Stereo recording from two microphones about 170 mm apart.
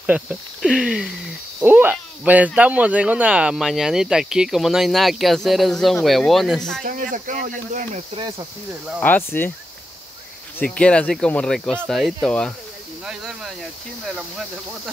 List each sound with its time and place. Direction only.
0.0 s speech: 5° right (ahead or behind)
6.8 s speech: 55° right (ahead or behind)
8.1 s speech: 30° right (ahead or behind)
9.0 s speech: 10° left (ahead or behind)
10.6 s speech: 5° left (ahead or behind)